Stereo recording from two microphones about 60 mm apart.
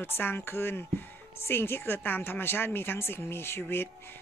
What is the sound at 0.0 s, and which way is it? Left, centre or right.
Speech, left.